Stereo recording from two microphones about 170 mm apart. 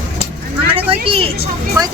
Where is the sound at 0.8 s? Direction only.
30° right (ahead or behind).